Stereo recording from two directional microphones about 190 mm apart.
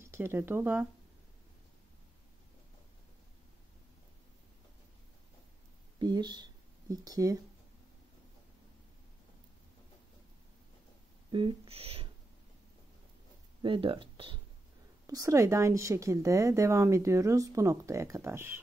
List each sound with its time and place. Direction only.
0.0 s speech: 15° right (ahead or behind)
5.9 s a sound: 20° right (ahead or behind)
11.3 s speech: 30° right (ahead or behind)
13.6 s speech: 25° right (ahead or behind)
15.0 s a woman's voice: 15° right (ahead or behind)